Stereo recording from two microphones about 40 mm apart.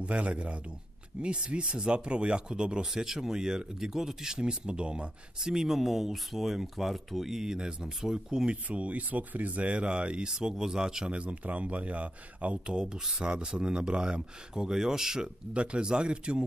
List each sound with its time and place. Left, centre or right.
0.0 s speech: right
2.9 s speech: centre
5.4 s speech: centre
8.6 s speech: right
10.3 s speech: centre
11.1 s speech: right
12.6 s speech: centre
13.2 s speech: right
15.2 s speech: right